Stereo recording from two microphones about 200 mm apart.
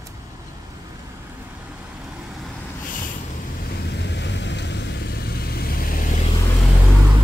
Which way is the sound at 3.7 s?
55° left (ahead or behind).